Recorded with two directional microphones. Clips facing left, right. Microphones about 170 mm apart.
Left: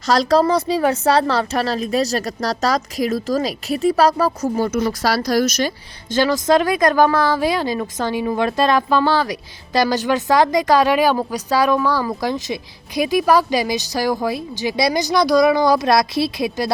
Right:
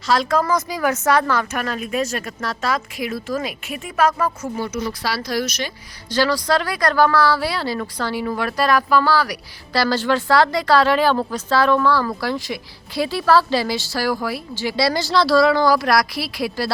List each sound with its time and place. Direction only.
0.1 s a woman's voice: 35° left (ahead or behind)
6.1 s a woman's voice: 20° left (ahead or behind)